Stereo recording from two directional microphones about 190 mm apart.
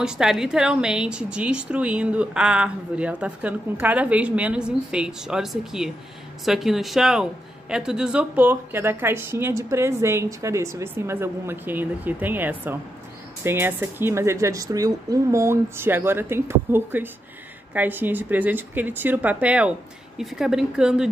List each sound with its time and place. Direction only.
0.0 s a woman's voice: 5° right (ahead or behind)